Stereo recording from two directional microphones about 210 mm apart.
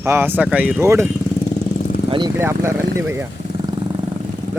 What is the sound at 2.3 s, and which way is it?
Speech, 10° right (ahead or behind).